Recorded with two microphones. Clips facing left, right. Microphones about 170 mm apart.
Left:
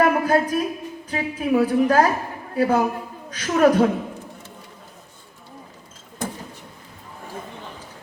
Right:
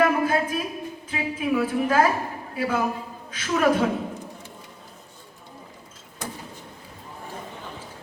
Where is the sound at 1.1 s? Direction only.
40° left (ahead or behind).